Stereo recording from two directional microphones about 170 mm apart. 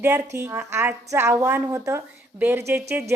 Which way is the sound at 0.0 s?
15° right (ahead or behind).